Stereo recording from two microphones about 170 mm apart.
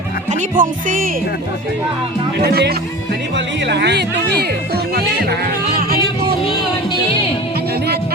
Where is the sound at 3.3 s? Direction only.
90° right.